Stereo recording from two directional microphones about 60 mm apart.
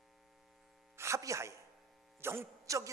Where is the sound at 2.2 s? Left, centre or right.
Right.